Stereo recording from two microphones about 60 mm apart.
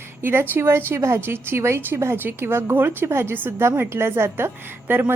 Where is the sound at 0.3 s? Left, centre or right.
Right.